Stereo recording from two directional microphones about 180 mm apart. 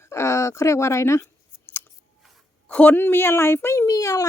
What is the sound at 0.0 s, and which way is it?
Speech, 15° left (ahead or behind).